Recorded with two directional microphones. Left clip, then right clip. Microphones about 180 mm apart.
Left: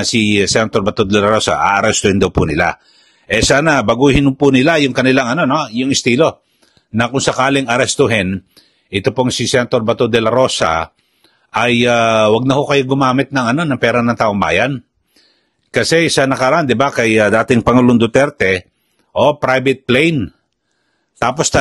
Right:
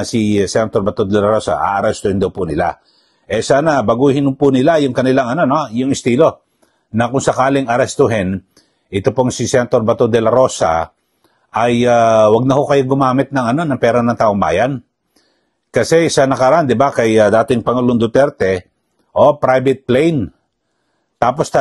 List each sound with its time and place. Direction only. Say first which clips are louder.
0.0 s a man's voice: left 2 dB; 25° left (ahead or behind)